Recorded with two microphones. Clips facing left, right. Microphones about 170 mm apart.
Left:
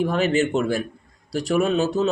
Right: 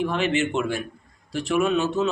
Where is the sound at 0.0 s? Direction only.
40° left (ahead or behind).